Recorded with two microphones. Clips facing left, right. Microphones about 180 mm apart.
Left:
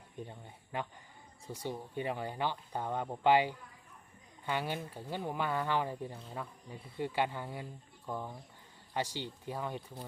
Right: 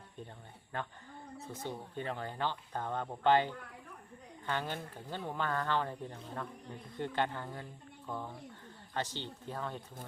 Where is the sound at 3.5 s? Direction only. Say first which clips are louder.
Right 5 dB; 65° right (ahead or behind).